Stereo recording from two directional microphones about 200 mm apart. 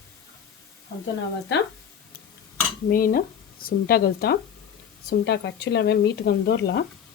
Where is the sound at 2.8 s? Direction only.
45° left (ahead or behind).